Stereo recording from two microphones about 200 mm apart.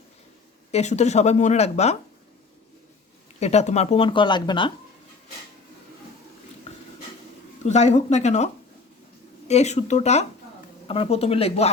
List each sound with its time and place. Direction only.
0.7 s speech: 35° left (ahead or behind)
3.4 s speech: 35° left (ahead or behind)
6.7 s a sound: 35° left (ahead or behind)
7.6 s speech: 35° left (ahead or behind)
9.5 s speech: 35° left (ahead or behind)